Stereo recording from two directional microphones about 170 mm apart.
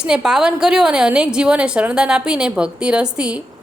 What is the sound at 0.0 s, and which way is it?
A woman's voice, 5° right (ahead or behind).